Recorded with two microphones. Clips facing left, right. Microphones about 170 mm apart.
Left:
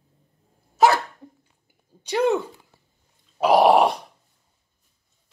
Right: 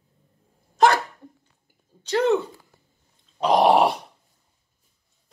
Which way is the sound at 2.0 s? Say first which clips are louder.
Right 1 dB; 15° left (ahead or behind).